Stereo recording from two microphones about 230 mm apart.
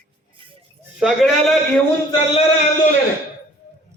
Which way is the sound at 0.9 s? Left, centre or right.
Centre.